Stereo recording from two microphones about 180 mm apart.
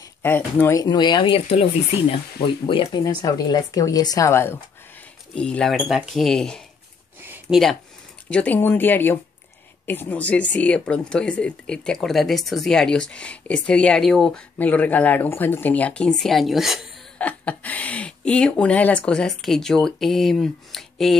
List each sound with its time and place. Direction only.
0.2 s speech: 10° left (ahead or behind)
7.2 s a sound: 10° right (ahead or behind)
8.3 s speech: 10° left (ahead or behind)